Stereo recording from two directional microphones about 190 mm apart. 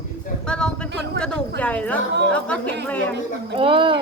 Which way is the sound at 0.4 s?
5° left (ahead or behind).